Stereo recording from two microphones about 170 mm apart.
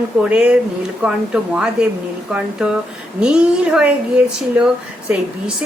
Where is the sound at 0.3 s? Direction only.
5° right (ahead or behind).